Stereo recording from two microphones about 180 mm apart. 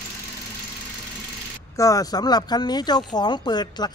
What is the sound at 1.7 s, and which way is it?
Speech, 20° left (ahead or behind).